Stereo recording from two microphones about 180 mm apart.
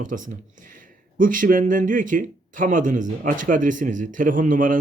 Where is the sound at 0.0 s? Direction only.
45° right (ahead or behind).